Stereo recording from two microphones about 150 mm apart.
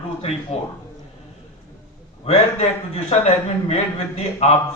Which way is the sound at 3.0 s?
45° left (ahead or behind).